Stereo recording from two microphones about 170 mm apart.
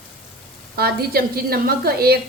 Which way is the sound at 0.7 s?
65° right (ahead or behind).